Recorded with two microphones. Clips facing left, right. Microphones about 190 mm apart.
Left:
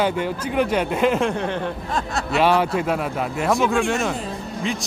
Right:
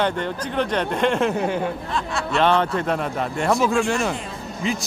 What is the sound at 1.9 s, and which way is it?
Speech, 40° left (ahead or behind).